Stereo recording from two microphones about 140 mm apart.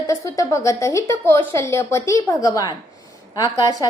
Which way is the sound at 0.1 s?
20° left (ahead or behind).